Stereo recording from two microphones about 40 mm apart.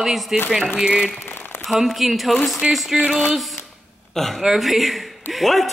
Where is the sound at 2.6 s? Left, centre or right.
Right.